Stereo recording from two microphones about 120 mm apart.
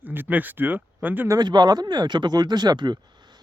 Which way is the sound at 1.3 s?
35° right (ahead or behind).